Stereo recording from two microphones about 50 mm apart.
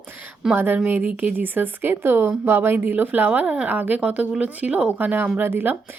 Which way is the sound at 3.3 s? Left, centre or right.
Right.